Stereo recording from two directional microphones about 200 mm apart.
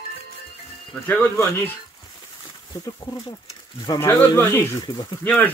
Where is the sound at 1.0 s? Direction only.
10° left (ahead or behind).